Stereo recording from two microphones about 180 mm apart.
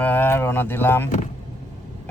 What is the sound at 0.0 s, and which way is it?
A man's voice, 10° left (ahead or behind).